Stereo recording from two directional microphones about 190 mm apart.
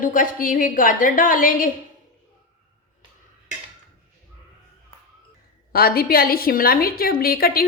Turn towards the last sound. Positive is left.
turn(degrees=50)  # may be behind; listen again after turning